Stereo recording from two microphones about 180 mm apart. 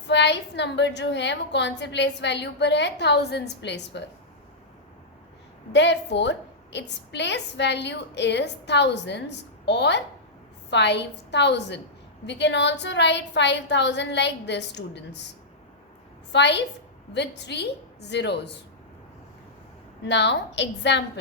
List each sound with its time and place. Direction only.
0.1 s a woman's voice: 75° left (ahead or behind)
5.7 s a woman's voice: 75° left (ahead or behind)
16.3 s a woman's voice: 75° left (ahead or behind)
20.1 s a woman's voice: 75° left (ahead or behind)